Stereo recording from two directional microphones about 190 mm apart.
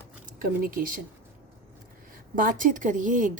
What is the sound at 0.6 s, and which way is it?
Speech, 50° right (ahead or behind).